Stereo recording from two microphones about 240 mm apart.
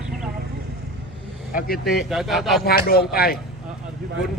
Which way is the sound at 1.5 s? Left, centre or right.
Left.